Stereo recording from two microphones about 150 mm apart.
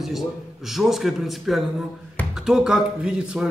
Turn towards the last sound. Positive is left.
turn(degrees=-5)  # may be behind; listen again after turning